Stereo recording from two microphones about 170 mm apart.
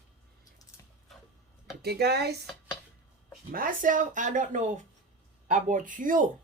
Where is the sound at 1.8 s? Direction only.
70° right (ahead or behind).